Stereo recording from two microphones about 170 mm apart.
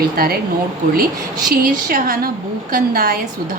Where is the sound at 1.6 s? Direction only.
55° right (ahead or behind).